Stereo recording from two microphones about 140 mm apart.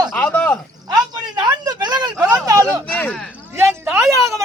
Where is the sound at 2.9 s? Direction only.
10° left (ahead or behind).